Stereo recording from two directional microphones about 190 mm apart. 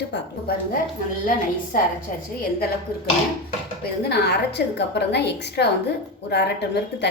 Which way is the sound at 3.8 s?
55° left (ahead or behind).